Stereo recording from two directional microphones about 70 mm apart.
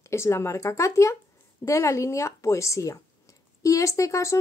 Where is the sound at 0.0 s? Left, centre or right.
Left.